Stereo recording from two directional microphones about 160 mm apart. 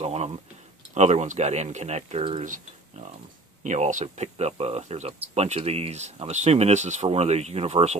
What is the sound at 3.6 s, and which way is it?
Speech, 50° right (ahead or behind).